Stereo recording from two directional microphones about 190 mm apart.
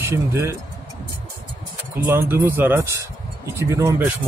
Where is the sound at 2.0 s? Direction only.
15° right (ahead or behind).